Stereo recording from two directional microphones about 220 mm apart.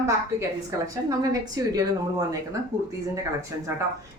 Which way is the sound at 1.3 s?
15° right (ahead or behind).